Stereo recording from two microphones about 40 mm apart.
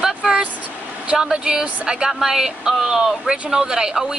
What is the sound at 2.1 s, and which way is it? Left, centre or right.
Speech, centre.